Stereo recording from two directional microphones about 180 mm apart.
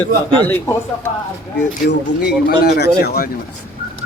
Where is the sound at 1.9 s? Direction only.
65° left (ahead or behind).